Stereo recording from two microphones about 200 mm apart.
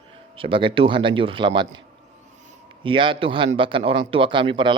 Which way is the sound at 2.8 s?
25° right (ahead or behind).